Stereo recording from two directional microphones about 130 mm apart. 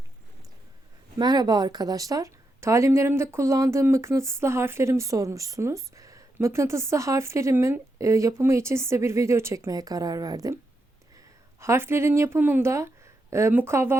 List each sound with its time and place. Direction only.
1.2 s speech: 30° right (ahead or behind)
11.6 s speech: 20° right (ahead or behind)